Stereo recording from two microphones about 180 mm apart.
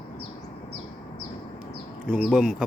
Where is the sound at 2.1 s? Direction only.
Centre (ahead or behind).